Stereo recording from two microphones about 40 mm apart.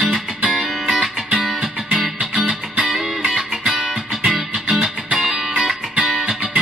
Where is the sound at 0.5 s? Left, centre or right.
Centre.